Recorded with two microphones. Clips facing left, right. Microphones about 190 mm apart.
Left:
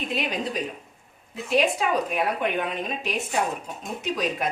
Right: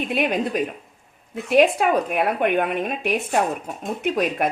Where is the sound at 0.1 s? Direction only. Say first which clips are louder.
Right 7 dB; 55° right (ahead or behind).